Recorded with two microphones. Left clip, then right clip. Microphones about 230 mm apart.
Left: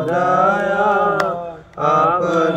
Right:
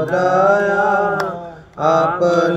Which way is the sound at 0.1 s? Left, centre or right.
Right.